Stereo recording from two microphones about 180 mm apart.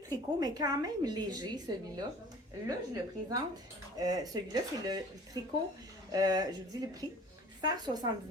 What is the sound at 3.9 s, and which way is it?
Speech, 20° right (ahead or behind).